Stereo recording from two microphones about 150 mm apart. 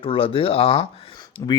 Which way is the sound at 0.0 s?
35° left (ahead or behind).